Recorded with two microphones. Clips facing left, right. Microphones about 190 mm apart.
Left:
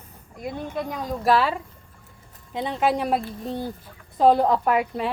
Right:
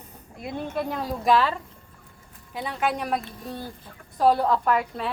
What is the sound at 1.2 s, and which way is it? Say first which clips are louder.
Speech: left 1 dB; 10° left (ahead or behind).